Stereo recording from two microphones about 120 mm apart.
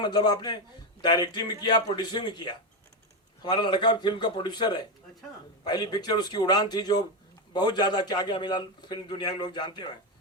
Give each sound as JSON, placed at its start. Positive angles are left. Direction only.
{"t": 0.0, "sound": "a man's voice", "side_deg": 35}